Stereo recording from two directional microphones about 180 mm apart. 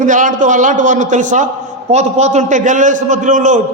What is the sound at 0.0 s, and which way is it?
A man's voice, 45° right (ahead or behind).